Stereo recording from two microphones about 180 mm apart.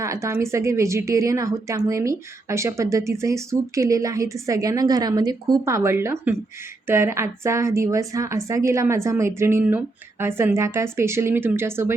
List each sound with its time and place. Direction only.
0.0 s a woman's voice: 15° right (ahead or behind)